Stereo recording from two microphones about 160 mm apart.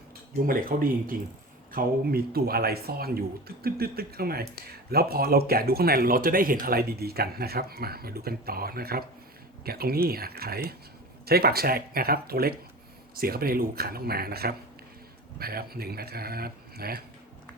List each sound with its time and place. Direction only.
0.4 s speech: 65° right (ahead or behind)